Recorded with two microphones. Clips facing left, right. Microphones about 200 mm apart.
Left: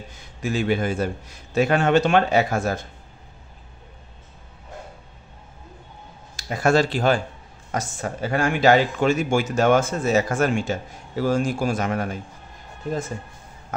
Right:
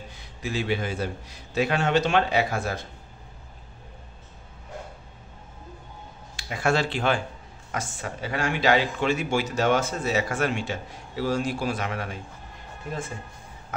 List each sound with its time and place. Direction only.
0.1 s speech: 45° left (ahead or behind)
6.3 s speech: 40° left (ahead or behind)